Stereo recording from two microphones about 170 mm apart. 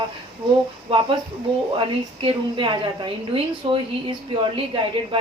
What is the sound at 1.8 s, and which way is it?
A woman's voice, 30° right (ahead or behind).